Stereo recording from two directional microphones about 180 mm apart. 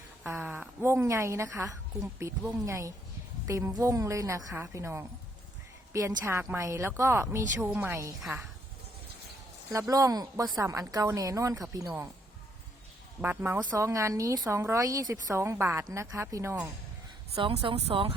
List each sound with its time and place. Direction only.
0.3 s a woman's voice: 10° right (ahead or behind)
8.2 s a woman's voice: 5° right (ahead or behind)
9.7 s a woman's voice: 20° right (ahead or behind)
13.2 s a woman's voice: 10° right (ahead or behind)
17.3 s speech: 30° right (ahead or behind)